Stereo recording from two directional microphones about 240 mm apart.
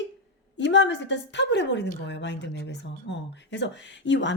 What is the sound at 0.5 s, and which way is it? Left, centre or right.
A woman's voice, left.